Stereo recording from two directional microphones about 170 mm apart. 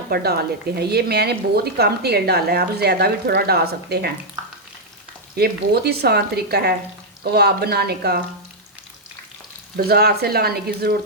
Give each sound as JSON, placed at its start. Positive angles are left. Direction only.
{"t": 0.1, "sound": "a woman's voice", "side_deg": -65}
{"t": 5.4, "sound": "a woman's voice", "side_deg": -70}
{"t": 9.7, "sound": "speech", "side_deg": -65}